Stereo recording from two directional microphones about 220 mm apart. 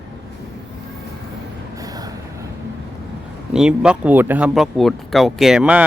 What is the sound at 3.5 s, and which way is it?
Speech, 5° right (ahead or behind).